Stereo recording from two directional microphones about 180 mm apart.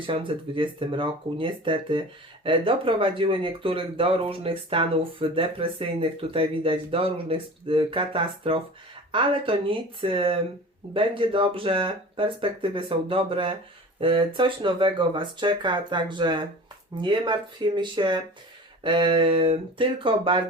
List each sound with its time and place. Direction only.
0.0 s speech: 30° right (ahead or behind)